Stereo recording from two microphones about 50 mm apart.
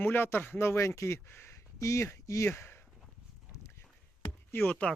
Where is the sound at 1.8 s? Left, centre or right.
Left.